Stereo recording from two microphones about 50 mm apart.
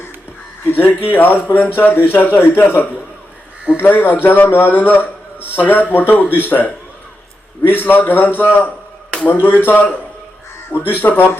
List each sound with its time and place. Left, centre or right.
0.6 s a man's voice: left